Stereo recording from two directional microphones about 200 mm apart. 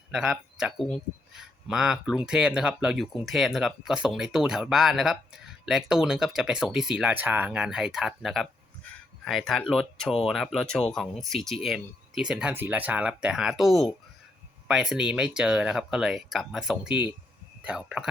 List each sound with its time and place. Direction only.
0.1 s speech: 5° right (ahead or behind)